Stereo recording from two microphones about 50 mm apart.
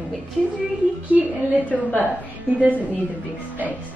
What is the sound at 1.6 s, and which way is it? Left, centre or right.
Speech, left.